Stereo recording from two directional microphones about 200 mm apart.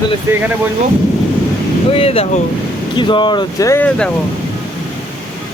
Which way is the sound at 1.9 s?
30° left (ahead or behind).